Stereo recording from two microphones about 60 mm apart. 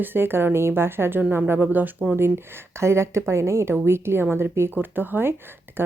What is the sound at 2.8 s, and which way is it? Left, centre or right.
Speech, right.